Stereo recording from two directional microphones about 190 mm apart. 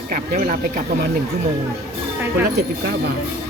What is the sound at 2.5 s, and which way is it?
Speech, 55° right (ahead or behind).